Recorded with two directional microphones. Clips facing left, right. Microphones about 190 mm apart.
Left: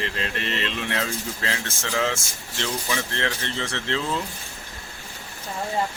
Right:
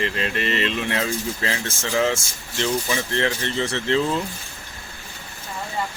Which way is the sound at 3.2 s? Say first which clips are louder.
Right 5 dB; 5° right (ahead or behind).